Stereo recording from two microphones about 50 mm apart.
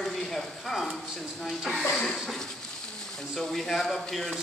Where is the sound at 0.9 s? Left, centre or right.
Centre.